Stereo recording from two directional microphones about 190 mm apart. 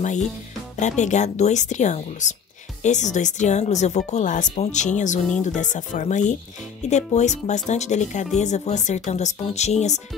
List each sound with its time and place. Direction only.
0.7 s speech: 40° left (ahead or behind)